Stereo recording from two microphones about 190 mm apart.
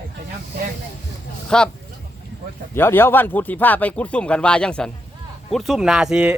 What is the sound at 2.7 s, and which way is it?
Speech, 10° left (ahead or behind).